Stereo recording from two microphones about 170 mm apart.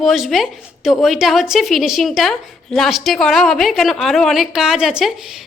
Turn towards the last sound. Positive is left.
turn(degrees=-5)  # may be behind; listen again after turning